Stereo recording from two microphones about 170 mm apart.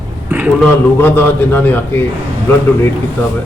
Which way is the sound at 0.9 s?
10° left (ahead or behind).